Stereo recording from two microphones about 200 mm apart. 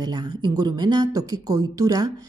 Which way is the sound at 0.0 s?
20° right (ahead or behind).